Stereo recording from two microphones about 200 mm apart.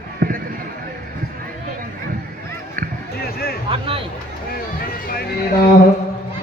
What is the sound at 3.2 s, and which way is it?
Music, 50° left (ahead or behind).